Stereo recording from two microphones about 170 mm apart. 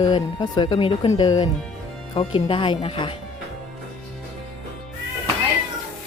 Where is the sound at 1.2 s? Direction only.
25° left (ahead or behind).